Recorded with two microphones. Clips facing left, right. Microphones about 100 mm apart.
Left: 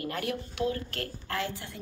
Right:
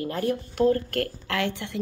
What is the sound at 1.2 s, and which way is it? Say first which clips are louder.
Speech: right 6 dB; 80° right.